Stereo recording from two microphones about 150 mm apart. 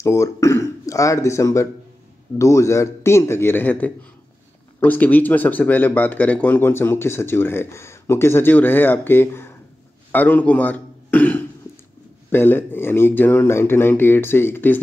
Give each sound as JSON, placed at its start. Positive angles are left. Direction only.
{"t": 0.0, "sound": "a man's voice", "side_deg": 20}